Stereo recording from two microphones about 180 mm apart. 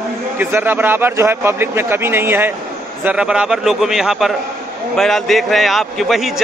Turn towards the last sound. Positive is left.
turn(degrees=0)  # may be behind; listen again after turning